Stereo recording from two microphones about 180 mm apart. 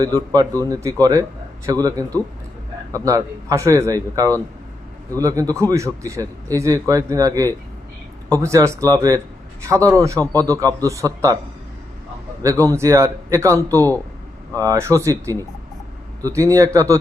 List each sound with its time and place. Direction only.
0.0 s a man's voice: 20° right (ahead or behind)
12.4 s a man's voice: 20° right (ahead or behind)